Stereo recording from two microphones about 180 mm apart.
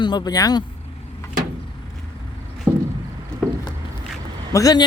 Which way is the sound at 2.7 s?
10° right (ahead or behind).